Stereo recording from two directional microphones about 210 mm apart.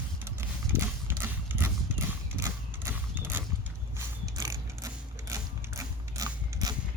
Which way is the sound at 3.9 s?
15° right (ahead or behind).